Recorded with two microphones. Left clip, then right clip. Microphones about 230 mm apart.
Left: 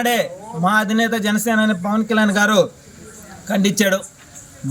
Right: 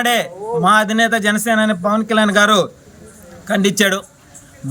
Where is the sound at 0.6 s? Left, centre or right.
Right.